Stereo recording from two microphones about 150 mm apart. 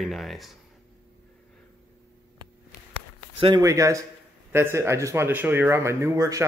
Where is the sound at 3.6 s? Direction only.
20° right (ahead or behind).